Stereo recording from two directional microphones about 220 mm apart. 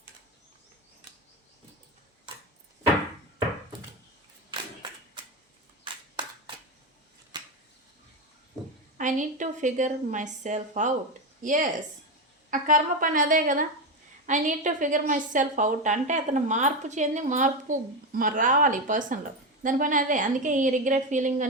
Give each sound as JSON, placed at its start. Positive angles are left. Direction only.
{"t": 4.5, "sound": "clapping", "side_deg": -20}
{"t": 7.3, "sound": "a sound", "side_deg": -20}
{"t": 9.0, "sound": "a woman's voice", "side_deg": -35}